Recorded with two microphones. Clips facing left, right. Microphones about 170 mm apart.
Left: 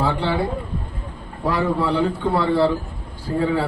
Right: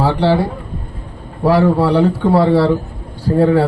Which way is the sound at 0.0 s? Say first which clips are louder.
Right 7 dB; 75° right (ahead or behind).